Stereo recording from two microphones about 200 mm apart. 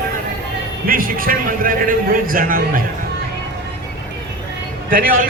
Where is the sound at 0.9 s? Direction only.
45° right (ahead or behind).